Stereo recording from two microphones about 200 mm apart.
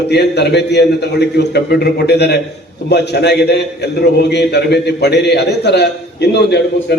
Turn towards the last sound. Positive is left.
turn(degrees=55)  # may be behind; listen again after turning